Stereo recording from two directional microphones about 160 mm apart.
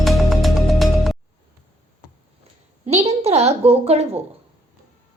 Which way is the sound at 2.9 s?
40° right (ahead or behind).